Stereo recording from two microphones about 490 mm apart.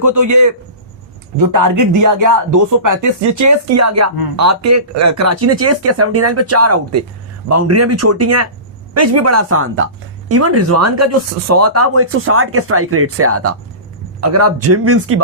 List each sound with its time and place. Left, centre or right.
0.0 s speech: right